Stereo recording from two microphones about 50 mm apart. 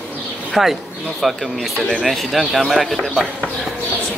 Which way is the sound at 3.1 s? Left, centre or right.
Centre.